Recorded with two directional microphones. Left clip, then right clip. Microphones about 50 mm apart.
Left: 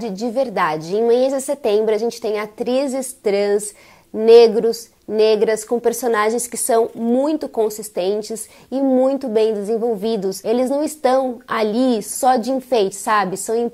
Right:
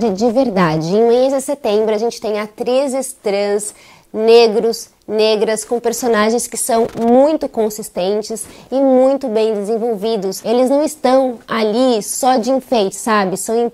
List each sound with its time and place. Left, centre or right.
0.0 s a woman's voice: left
5.9 s a woman's voice: left
7.0 s a woman's voice: left
12.5 s a woman's voice: left